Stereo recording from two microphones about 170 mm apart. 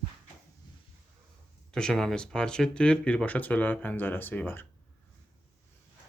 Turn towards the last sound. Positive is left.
turn(degrees=10)  # may be behind; listen again after turning